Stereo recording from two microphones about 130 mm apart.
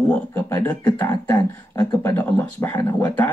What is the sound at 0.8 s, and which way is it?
Speech, 30° left (ahead or behind).